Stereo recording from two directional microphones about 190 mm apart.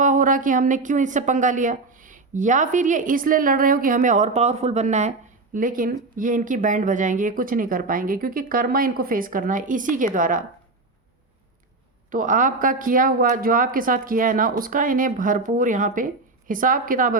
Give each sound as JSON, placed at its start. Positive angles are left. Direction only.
{"t": 0.0, "sound": "speech", "side_deg": -45}
{"t": 12.1, "sound": "speech", "side_deg": -45}